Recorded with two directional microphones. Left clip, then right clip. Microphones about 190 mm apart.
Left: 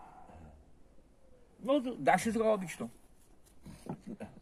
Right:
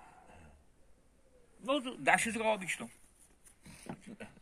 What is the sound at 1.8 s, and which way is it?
A man's voice, 15° left (ahead or behind).